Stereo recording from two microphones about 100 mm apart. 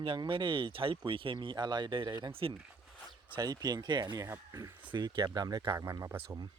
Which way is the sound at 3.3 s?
45° right (ahead or behind).